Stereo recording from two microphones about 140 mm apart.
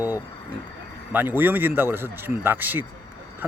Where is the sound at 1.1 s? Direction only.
15° right (ahead or behind).